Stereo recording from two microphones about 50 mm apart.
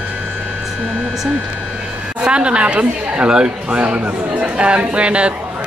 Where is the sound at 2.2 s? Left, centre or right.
Right.